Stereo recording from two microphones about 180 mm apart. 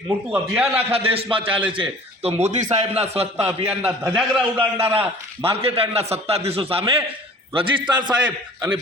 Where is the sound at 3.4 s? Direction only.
10° right (ahead or behind).